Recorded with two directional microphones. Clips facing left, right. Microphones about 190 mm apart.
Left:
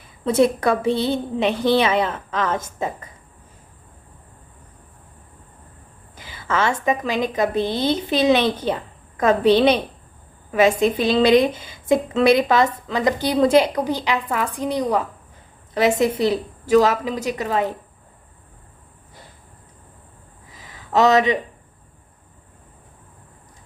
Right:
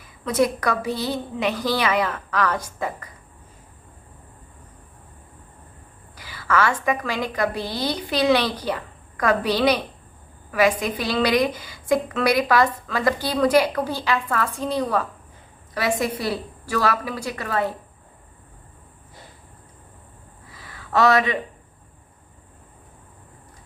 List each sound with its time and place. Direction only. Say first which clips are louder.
0.0 s a woman's voice: left 4 dB; 30° left (ahead or behind)
6.1 s a woman's voice: right 1 dB; 25° left (ahead or behind)
20.5 s a sound: left 2 dB; 20° left (ahead or behind)